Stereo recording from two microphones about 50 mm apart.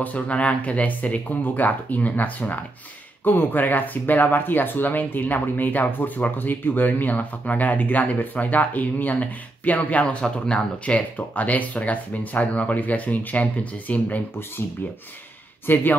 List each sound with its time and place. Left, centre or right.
0.0 s speech: left
10.2 s speech: centre
11.0 s speech: left
15.6 s speech: left